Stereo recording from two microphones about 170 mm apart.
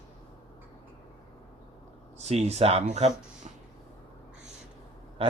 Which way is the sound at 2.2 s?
40° right (ahead or behind).